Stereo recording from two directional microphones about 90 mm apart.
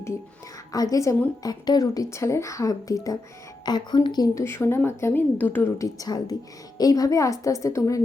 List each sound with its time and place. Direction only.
0.7 s a woman's voice: 45° left (ahead or behind)
3.7 s a woman's voice: 50° left (ahead or behind)
4.4 s a woman's voice: 30° left (ahead or behind)
5.8 s a woman's voice: 45° left (ahead or behind)